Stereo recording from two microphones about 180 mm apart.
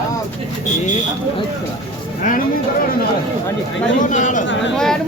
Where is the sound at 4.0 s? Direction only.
45° left (ahead or behind).